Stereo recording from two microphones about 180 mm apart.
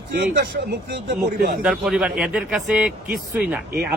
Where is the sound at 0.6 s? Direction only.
55° right (ahead or behind).